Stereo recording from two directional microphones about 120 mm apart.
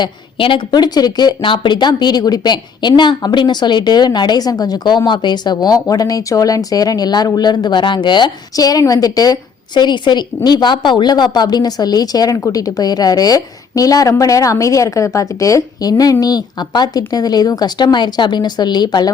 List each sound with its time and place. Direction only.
0.0 s a woman's voice: 45° left (ahead or behind)